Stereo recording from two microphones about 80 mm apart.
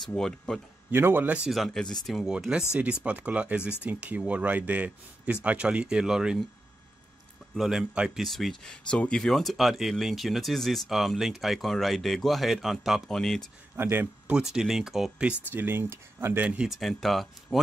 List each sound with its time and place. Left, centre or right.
0.1 s speech: centre
0.9 s speech: right
1.5 s speech: centre
2.7 s a man's voice: centre
7.5 s a man's voice: centre
8.2 s speech: centre
13.7 s speech: right
14.3 s a man's voice: centre
15.5 s speech: right
16.6 s speech: centre